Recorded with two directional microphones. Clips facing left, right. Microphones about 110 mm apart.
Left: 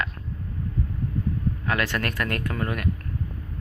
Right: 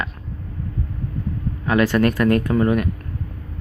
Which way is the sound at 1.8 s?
30° right (ahead or behind).